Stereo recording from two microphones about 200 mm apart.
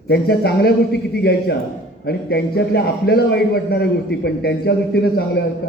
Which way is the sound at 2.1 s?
55° left (ahead or behind).